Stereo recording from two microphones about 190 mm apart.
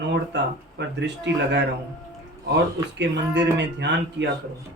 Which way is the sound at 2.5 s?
65° right (ahead or behind).